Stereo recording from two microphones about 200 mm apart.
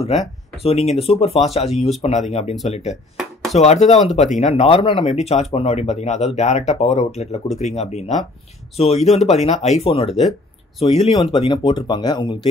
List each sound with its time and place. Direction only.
0.6 s speech: 30° left (ahead or behind)